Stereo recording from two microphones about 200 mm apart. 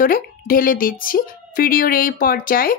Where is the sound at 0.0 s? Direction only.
45° left (ahead or behind).